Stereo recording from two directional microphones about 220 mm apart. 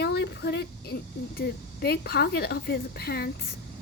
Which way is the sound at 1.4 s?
45° left (ahead or behind).